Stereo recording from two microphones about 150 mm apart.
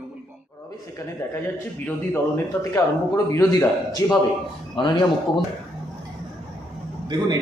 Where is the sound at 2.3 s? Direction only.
15° left (ahead or behind).